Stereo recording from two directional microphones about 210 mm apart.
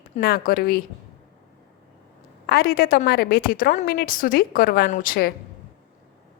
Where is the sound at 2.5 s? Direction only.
45° left (ahead or behind).